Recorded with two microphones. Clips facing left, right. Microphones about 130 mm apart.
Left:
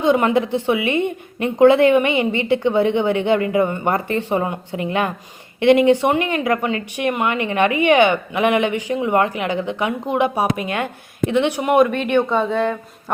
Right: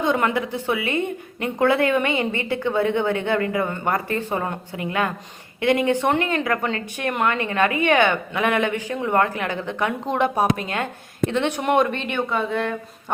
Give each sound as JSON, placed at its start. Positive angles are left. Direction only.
{"t": 0.0, "sound": "a woman's voice", "side_deg": 20}